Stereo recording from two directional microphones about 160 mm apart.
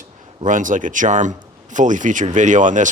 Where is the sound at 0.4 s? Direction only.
55° right (ahead or behind).